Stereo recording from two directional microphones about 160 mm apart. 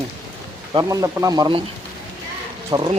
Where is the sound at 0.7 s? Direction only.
20° right (ahead or behind).